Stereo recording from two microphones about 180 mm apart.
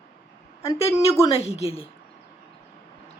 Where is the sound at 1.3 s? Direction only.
35° left (ahead or behind).